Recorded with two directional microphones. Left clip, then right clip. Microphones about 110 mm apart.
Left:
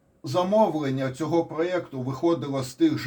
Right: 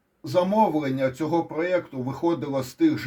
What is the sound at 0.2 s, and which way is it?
A man's voice, 40° right (ahead or behind).